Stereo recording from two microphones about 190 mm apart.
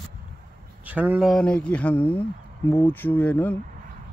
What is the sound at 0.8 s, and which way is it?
Speech, 10° right (ahead or behind).